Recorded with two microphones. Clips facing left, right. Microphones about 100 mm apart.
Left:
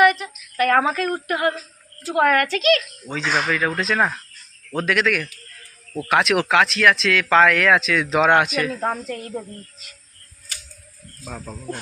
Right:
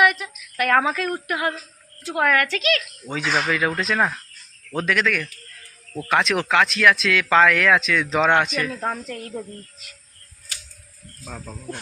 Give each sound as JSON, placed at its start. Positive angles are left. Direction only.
{"t": 0.0, "sound": "a sound", "side_deg": 0}
{"t": 0.8, "sound": "speech", "side_deg": 0}
{"t": 3.1, "sound": "speech", "side_deg": -20}
{"t": 3.8, "sound": "speech", "side_deg": 0}
{"t": 11.3, "sound": "speech", "side_deg": 5}